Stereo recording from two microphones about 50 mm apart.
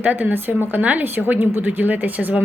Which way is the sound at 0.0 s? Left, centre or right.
Right.